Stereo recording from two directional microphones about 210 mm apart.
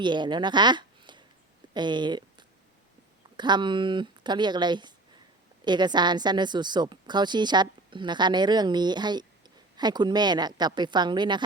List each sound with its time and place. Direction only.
0.0 s speech: 20° right (ahead or behind)
3.3 s speech: 20° right (ahead or behind)